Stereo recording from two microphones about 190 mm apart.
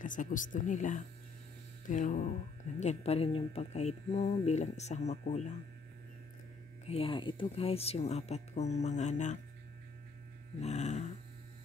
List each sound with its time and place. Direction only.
0.0 s speech: 45° left (ahead or behind)
6.9 s speech: 30° left (ahead or behind)
10.6 s speech: 35° left (ahead or behind)